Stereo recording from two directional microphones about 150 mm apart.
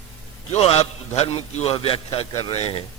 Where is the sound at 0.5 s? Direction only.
45° left (ahead or behind).